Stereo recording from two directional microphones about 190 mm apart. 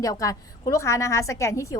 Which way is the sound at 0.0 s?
15° left (ahead or behind).